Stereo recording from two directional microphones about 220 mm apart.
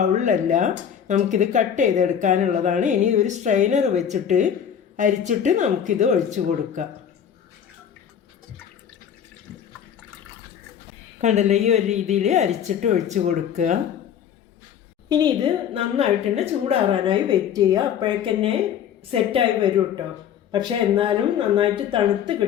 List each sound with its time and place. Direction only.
0.0 s speech: 35° right (ahead or behind)
11.2 s speech: 30° right (ahead or behind)
15.1 s a woman's voice: 20° right (ahead or behind)